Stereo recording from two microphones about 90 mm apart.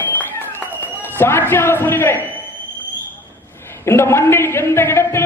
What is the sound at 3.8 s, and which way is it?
A man's voice, 30° left (ahead or behind).